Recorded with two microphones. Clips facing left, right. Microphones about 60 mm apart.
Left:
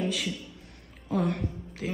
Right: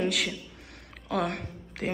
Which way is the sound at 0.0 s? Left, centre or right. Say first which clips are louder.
Right 2 dB; right.